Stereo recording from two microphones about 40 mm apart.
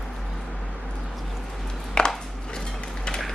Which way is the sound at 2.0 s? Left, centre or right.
Left.